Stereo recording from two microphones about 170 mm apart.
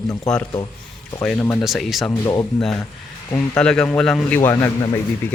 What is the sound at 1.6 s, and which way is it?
Speech, centre (ahead or behind).